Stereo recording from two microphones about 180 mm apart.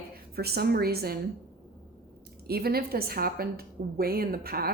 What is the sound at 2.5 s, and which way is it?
A woman's voice, 60° right (ahead or behind).